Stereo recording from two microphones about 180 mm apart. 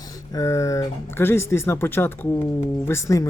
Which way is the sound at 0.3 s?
20° left (ahead or behind).